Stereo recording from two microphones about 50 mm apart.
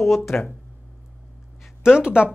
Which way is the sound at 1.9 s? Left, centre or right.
Centre.